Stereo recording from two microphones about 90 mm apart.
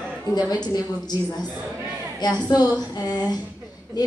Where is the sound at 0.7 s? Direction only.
45° left (ahead or behind).